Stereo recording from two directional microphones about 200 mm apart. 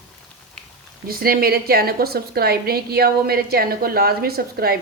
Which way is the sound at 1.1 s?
50° right (ahead or behind).